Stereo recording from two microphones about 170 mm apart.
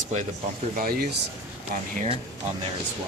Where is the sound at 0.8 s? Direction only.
60° right (ahead or behind).